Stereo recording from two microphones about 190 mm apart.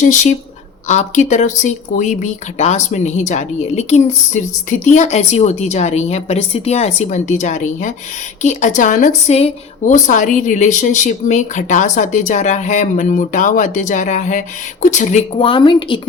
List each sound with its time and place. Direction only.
0.0 s a woman's voice: 40° left (ahead or behind); by 16.0 s 25° left (ahead or behind)